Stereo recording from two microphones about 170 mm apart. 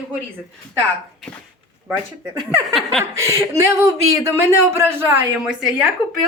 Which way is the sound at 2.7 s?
5° left (ahead or behind).